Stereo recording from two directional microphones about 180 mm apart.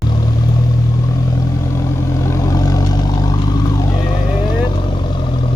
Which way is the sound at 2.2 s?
15° left (ahead or behind).